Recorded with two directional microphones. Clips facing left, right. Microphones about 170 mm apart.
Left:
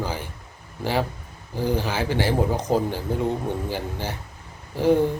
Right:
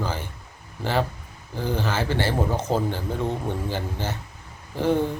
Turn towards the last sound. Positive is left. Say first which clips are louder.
# left 3 dB
turn(degrees=10)  # may be behind; listen again after turning